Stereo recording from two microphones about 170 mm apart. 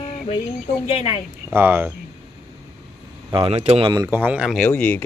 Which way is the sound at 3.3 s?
35° right (ahead or behind).